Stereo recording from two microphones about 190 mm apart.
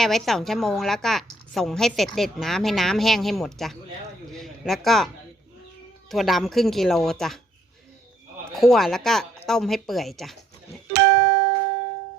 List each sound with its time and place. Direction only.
0.0 s a woman's voice: centre (ahead or behind)
4.3 s a sound: centre (ahead or behind)
6.1 s a woman's voice: centre (ahead or behind)
8.6 s a woman's voice: centre (ahead or behind)
10.9 s music: 65° right (ahead or behind)